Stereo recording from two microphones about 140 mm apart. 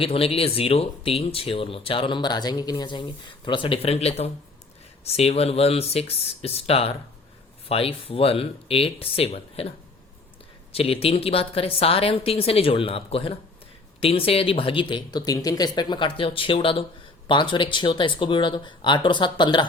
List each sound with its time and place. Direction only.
0.0 s a woman's voice: 45° left (ahead or behind)